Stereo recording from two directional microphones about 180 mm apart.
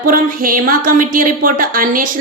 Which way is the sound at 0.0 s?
50° right (ahead or behind).